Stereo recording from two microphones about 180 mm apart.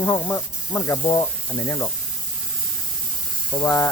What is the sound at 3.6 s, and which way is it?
Speech, 20° left (ahead or behind).